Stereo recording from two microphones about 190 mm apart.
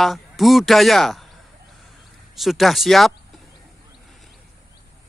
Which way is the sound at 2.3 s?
Centre (ahead or behind).